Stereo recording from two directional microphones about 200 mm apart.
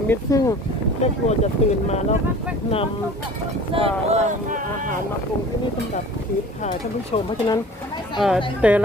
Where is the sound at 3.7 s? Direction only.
25° right (ahead or behind).